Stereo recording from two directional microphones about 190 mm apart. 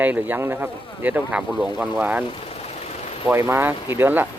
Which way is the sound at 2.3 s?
30° left (ahead or behind).